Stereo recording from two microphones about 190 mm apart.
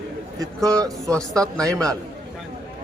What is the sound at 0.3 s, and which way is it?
Speech, 20° right (ahead or behind).